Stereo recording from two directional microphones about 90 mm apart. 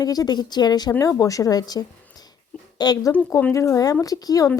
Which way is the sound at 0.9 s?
40° left (ahead or behind).